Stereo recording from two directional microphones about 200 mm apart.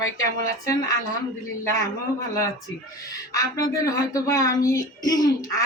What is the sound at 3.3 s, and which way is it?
Speech, 15° left (ahead or behind).